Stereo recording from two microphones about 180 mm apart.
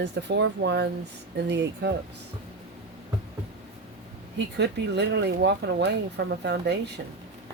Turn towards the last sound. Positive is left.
turn(degrees=-70)  # may be behind; listen again after turning